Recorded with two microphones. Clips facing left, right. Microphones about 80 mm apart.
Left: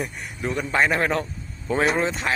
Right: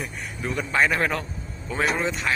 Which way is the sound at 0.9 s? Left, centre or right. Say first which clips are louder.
Left 2 dB; left.